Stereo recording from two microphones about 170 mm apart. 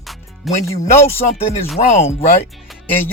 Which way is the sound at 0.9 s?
15° left (ahead or behind).